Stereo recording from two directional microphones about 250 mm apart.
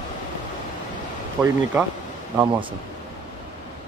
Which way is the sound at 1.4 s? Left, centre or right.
Centre.